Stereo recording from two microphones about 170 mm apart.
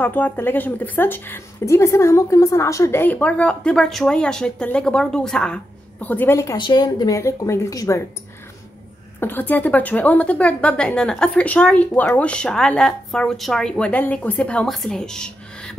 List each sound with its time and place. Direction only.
0.0 s a woman's voice: 10° left (ahead or behind)
9.2 s speech: 10° left (ahead or behind)